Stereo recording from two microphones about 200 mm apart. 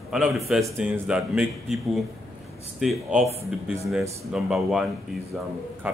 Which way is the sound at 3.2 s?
30° right (ahead or behind).